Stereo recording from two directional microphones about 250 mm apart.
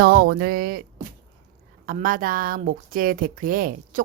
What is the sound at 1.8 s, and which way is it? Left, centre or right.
Speech, right.